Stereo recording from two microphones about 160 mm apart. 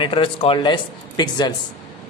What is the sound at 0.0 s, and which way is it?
Speech, 35° left (ahead or behind).